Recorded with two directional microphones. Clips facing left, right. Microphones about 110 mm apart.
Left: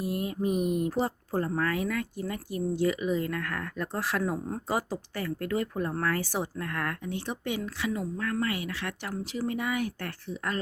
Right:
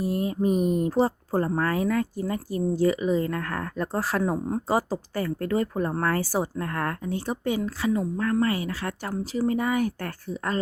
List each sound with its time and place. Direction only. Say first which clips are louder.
0.0 s speech: right 5 dB; 30° right (ahead or behind)
4.2 s speech: right 5 dB; 20° right (ahead or behind)
4.7 s speech: right 5 dB; 35° right (ahead or behind)